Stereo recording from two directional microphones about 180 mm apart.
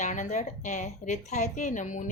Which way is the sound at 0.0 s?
45° left (ahead or behind).